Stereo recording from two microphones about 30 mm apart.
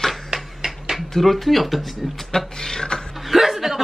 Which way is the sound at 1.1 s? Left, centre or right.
Centre.